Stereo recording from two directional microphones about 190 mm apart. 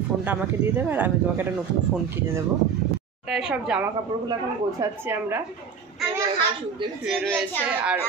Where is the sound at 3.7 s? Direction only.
5° right (ahead or behind).